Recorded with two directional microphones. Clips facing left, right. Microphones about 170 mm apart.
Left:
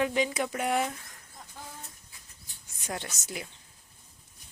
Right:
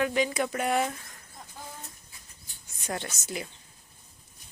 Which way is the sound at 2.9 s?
10° left (ahead or behind).